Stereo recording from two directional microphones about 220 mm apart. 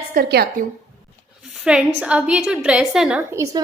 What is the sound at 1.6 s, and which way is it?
A woman's voice, 5° right (ahead or behind).